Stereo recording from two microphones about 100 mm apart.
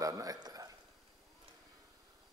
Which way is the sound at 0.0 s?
35° right (ahead or behind).